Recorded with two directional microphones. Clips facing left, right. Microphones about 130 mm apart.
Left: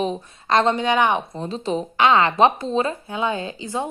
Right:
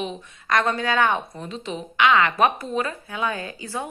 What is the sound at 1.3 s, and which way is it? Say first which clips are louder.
A woman's voice: left 7 dB; 30° left (ahead or behind).